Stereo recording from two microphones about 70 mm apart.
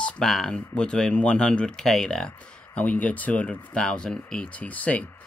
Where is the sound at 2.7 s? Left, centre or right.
Centre.